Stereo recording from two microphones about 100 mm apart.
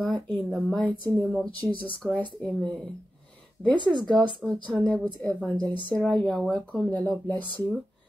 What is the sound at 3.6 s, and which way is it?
Speech, 50° right (ahead or behind).